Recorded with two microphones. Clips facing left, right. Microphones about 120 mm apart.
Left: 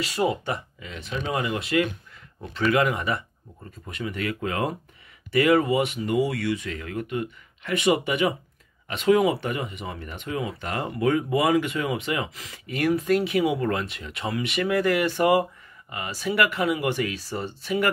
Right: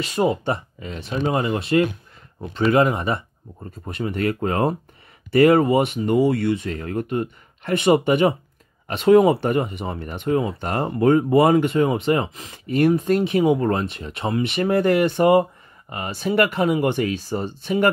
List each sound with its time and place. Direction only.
0.2 s speech: 35° right (ahead or behind)
6.7 s speech: 40° right (ahead or behind)